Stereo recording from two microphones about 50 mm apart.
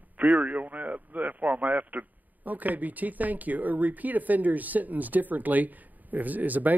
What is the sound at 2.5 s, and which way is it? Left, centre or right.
Speech, right.